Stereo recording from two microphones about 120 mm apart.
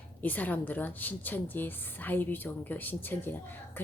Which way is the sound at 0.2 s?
15° left (ahead or behind).